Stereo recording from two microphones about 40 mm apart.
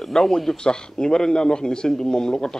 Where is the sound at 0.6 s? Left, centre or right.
Centre.